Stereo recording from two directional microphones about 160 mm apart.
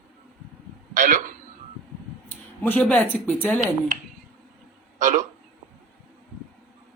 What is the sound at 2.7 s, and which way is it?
Speech, 10° left (ahead or behind).